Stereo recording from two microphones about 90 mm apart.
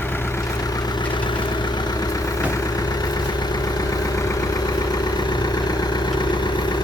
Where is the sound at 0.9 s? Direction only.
60° left (ahead or behind).